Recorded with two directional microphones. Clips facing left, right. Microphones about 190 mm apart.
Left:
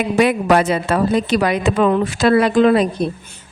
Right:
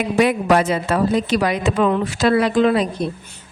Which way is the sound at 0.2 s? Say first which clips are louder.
Left 1 dB; 70° left (ahead or behind).